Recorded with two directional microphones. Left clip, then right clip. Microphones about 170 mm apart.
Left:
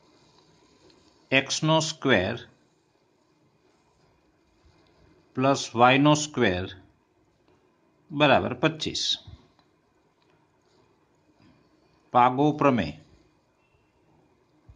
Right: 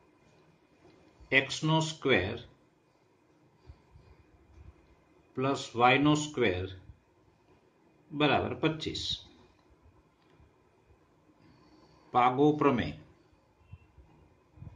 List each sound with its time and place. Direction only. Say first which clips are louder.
1.3 s speech: left 5 dB; 50° left (ahead or behind)
5.3 s speech: left 8 dB; 50° left (ahead or behind)
8.2 s speech: left 7 dB; 50° left (ahead or behind)
12.1 s a man's voice: left 4 dB; 40° left (ahead or behind)